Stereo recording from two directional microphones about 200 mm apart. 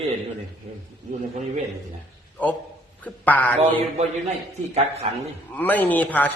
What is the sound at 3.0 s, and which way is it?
Speech, 10° left (ahead or behind).